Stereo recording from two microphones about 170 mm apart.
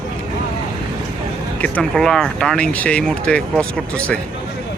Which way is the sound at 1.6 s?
5° left (ahead or behind).